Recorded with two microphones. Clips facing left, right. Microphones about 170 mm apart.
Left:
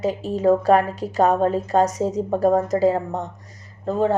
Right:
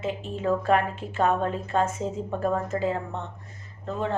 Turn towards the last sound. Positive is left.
turn(degrees=40)  # may be behind; listen again after turning